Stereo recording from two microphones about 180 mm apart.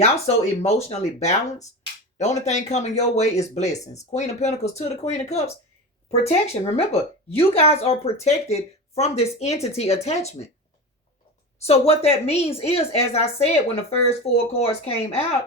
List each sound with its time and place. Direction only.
0.6 s speech: 35° left (ahead or behind)
11.6 s speech: 35° left (ahead or behind)